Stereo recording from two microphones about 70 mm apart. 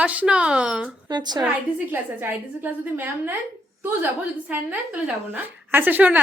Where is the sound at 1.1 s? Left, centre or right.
Right.